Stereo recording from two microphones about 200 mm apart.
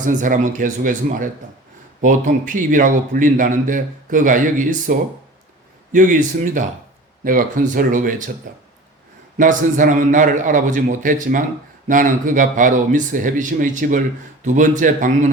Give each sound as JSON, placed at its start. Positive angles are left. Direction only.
{"t": 0.0, "sound": "a man's voice", "side_deg": -40}